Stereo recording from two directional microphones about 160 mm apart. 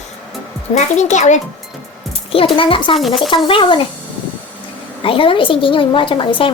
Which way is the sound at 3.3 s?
30° left (ahead or behind).